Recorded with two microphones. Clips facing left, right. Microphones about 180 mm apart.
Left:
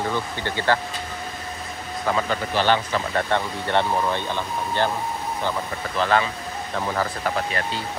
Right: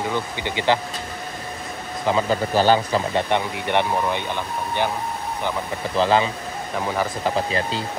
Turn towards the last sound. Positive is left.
turn(degrees=-25)  # may be behind; listen again after turning